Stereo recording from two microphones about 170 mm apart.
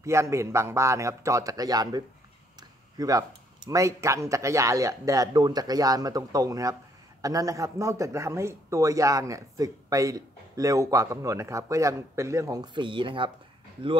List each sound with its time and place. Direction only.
0.0 s a man's voice: 15° right (ahead or behind)